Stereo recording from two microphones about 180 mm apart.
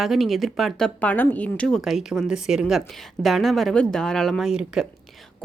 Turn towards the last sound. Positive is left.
turn(degrees=-5)  # may be behind; listen again after turning